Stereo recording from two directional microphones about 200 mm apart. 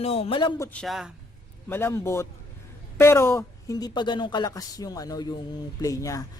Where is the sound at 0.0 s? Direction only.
30° left (ahead or behind).